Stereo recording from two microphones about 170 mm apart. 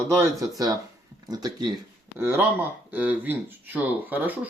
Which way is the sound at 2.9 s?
10° right (ahead or behind).